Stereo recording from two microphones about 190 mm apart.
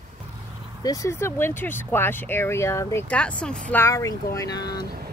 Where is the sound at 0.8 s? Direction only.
15° left (ahead or behind).